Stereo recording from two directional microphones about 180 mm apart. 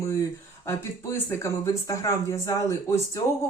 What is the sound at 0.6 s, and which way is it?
Speech, 15° left (ahead or behind).